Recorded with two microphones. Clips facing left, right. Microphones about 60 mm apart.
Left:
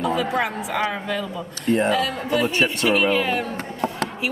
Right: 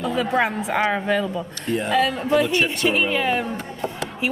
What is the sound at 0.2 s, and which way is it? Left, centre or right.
A woman's voice, right.